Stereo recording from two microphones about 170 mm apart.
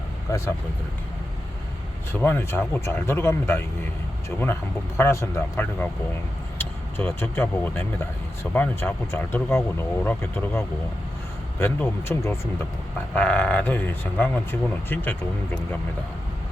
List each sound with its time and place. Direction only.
0.3 s speech: 15° left (ahead or behind)
2.1 s speech: 10° left (ahead or behind)
4.9 s speech: 15° left (ahead or behind)